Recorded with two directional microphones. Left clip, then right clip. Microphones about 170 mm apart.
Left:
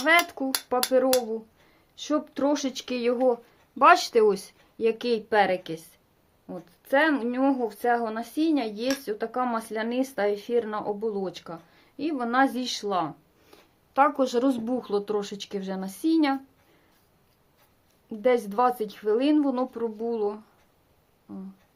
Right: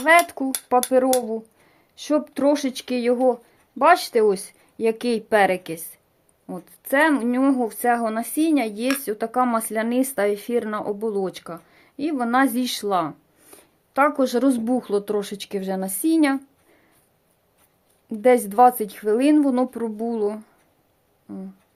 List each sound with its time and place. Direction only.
0.0 s speech: 30° right (ahead or behind)
3.8 s speech: 15° right (ahead or behind)
4.8 s speech: 35° right (ahead or behind)
18.1 s speech: 40° right (ahead or behind)